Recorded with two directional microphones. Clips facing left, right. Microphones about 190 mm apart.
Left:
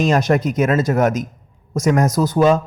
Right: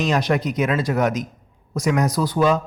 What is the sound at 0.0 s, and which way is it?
A man's voice, 45° left (ahead or behind).